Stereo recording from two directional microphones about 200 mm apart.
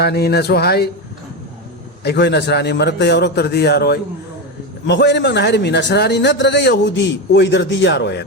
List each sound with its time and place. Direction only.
0.0 s speech: 55° left (ahead or behind)
2.0 s a man's voice: 60° left (ahead or behind)